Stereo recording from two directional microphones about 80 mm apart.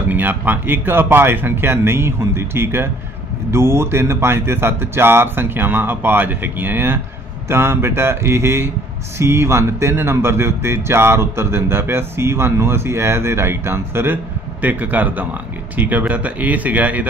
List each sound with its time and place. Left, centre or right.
0.1 s speech: right